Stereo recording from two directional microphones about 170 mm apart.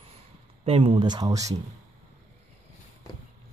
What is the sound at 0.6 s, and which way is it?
Speech, 35° right (ahead or behind).